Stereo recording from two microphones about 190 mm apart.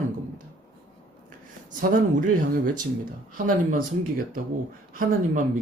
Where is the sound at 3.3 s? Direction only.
45° right (ahead or behind).